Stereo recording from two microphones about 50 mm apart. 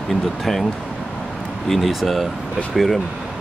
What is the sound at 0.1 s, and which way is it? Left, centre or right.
Speech, centre.